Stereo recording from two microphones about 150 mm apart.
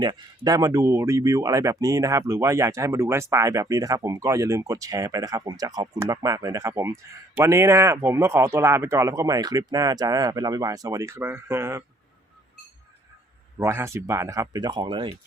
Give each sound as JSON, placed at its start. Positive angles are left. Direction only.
{"t": 0.0, "sound": "speech", "side_deg": -25}
{"t": 13.6, "sound": "speech", "side_deg": -20}